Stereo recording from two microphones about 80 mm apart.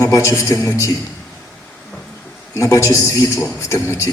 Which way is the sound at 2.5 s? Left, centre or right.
Left.